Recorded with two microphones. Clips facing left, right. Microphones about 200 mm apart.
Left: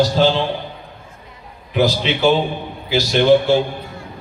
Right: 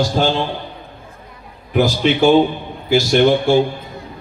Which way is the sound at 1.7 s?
50° right (ahead or behind).